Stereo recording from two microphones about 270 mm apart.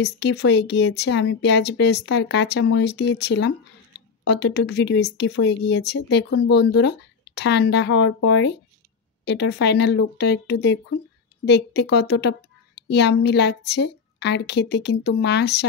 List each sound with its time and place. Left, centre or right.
0.0 s speech: left